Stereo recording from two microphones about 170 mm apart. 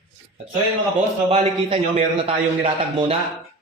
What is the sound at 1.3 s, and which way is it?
Speech, 40° right (ahead or behind).